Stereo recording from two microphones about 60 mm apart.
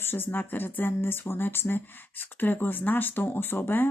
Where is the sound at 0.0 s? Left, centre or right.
Left.